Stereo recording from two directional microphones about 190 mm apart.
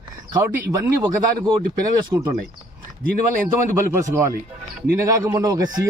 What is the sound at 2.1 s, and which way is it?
Speech, 15° right (ahead or behind).